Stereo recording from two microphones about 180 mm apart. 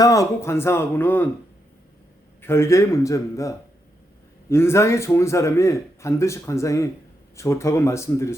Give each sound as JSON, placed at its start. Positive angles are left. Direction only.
{"t": 0.0, "sound": "a man's voice", "side_deg": 20}
{"t": 2.4, "sound": "a man's voice", "side_deg": 15}